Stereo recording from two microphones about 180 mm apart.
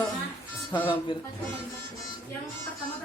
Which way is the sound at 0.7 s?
10° left (ahead or behind).